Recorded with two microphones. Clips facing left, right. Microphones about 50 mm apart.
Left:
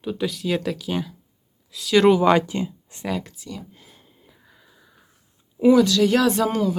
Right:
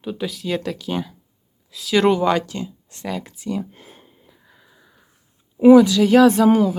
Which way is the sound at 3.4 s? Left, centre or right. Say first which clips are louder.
Right 10 dB; right.